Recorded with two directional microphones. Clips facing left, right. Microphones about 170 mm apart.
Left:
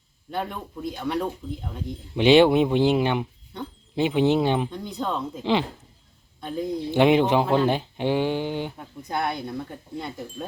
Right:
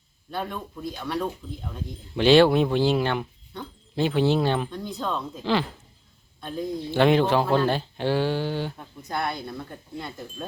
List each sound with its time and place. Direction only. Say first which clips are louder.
0.3 s speech: left 1 dB; 15° left (ahead or behind)